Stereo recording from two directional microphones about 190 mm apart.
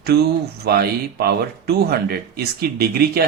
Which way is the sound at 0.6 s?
55° right (ahead or behind).